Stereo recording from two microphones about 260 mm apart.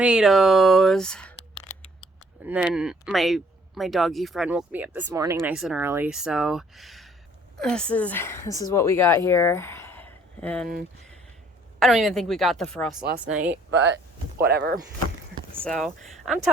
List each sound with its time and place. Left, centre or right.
0.0 s speech: centre
2.4 s a woman's voice: centre
11.8 s speech: centre
13.7 s speech: right
15.6 s speech: centre